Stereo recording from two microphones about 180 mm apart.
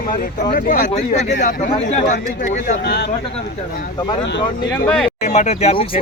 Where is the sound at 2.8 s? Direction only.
65° left (ahead or behind).